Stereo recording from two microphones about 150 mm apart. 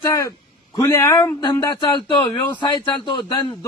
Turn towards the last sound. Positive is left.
turn(degrees=30)  # may be behind; listen again after turning